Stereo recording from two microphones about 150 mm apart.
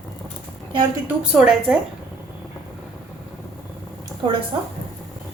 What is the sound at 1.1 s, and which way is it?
Speech, 5° right (ahead or behind).